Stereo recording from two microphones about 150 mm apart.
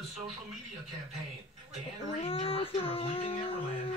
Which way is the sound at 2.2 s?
40° left (ahead or behind).